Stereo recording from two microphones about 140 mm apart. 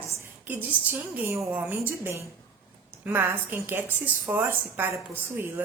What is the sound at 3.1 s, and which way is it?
A woman's voice, 15° right (ahead or behind).